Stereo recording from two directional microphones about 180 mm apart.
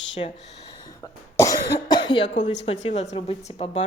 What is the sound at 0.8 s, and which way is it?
Cough, 20° left (ahead or behind).